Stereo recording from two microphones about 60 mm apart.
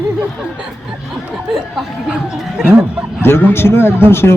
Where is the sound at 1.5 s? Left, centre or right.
Centre.